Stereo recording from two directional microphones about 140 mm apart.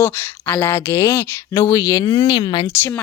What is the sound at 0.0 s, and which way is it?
Speech, 15° left (ahead or behind).